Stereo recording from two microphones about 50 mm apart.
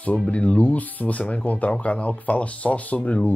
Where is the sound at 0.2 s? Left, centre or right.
Left.